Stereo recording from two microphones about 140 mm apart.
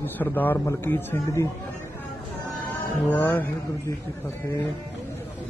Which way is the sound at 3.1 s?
15° left (ahead or behind).